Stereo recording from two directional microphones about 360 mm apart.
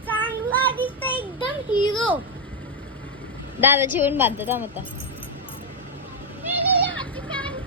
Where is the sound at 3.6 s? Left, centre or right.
Centre.